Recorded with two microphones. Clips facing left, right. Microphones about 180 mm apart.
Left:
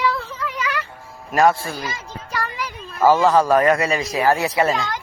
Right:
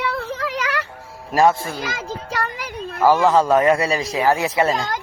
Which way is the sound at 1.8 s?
90° right.